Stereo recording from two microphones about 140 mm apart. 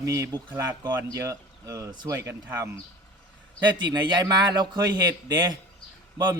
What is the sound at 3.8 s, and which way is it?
Speech, 30° right (ahead or behind).